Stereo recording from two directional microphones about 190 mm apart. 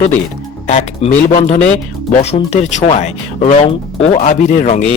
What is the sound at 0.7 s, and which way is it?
Speech, 35° left (ahead or behind).